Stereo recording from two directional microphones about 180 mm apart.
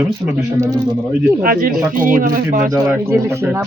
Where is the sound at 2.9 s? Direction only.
15° right (ahead or behind).